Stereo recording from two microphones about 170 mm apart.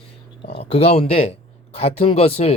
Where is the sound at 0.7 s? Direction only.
35° left (ahead or behind).